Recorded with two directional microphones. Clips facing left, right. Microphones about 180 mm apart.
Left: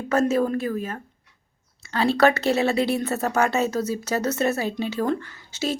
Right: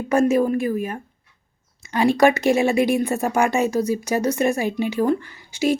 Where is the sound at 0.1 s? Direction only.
15° right (ahead or behind).